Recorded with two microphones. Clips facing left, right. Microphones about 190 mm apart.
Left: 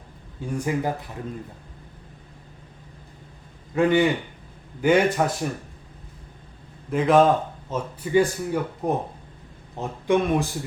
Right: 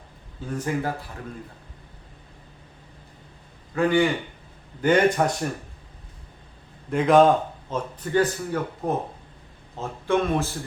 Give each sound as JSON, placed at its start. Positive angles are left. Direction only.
{"t": 0.4, "sound": "speech", "side_deg": 15}
{"t": 3.8, "sound": "a man's voice", "side_deg": 20}
{"t": 4.8, "sound": "a man's voice", "side_deg": 10}
{"t": 6.9, "sound": "speech", "side_deg": 0}